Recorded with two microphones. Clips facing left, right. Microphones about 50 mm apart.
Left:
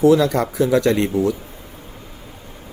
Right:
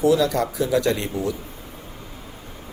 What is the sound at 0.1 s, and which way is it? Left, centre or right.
Speech, left.